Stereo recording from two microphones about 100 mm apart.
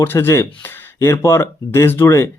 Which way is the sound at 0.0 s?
25° left (ahead or behind).